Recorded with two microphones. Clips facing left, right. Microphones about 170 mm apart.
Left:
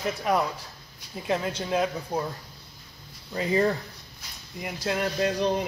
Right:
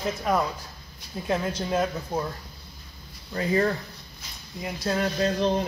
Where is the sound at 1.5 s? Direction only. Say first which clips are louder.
Right 1 dB; 10° right (ahead or behind).